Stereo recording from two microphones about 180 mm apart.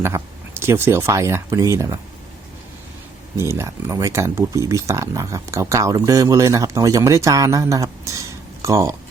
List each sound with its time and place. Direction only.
0.0 s speech: 15° right (ahead or behind)
3.3 s speech: 15° right (ahead or behind)